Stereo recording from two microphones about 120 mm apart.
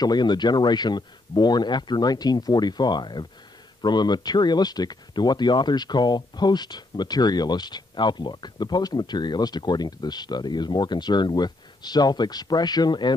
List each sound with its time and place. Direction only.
0.0 s speech: 35° left (ahead or behind)